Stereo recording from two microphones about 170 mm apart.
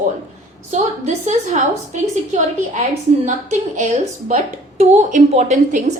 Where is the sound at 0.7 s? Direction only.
45° right (ahead or behind).